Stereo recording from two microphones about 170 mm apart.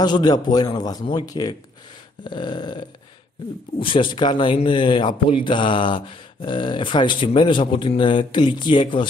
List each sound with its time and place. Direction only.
0.0 s speech: 25° left (ahead or behind)
3.8 s speech: 30° left (ahead or behind)